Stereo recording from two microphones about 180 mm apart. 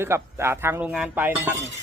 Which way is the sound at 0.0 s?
15° right (ahead or behind).